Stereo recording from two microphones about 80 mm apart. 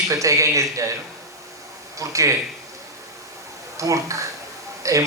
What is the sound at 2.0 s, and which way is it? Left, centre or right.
Speech, right.